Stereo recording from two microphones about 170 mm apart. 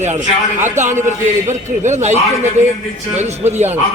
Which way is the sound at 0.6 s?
45° right (ahead or behind).